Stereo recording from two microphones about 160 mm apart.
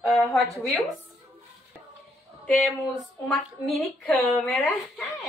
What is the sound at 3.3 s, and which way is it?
A woman's voice, centre (ahead or behind).